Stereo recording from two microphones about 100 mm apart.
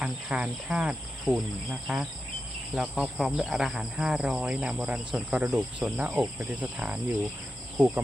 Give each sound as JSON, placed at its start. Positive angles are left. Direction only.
{"t": 0.0, "sound": "speech", "side_deg": -10}